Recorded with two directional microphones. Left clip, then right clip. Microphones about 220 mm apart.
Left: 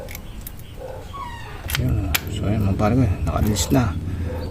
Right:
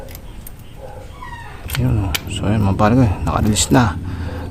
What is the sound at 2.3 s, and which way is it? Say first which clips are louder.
Speech: right 5 dB; 25° right (ahead or behind).